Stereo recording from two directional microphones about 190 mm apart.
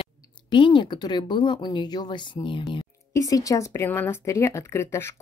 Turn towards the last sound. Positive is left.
turn(degrees=15)  # may be behind; listen again after turning